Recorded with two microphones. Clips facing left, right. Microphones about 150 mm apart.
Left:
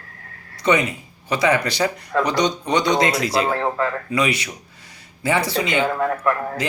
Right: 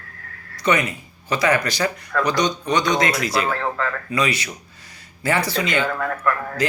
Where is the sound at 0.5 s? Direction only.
25° left (ahead or behind).